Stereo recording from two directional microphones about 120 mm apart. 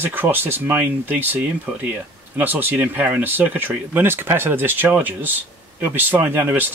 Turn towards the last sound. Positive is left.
turn(degrees=-20)  # may be behind; listen again after turning